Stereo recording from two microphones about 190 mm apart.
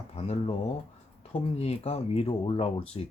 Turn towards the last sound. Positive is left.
turn(degrees=30)  # may be behind; listen again after turning